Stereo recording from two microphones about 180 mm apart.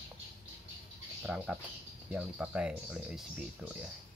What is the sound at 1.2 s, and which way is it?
Speech, 5° right (ahead or behind).